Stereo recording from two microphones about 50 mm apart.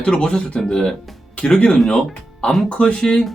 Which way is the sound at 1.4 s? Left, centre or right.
Left.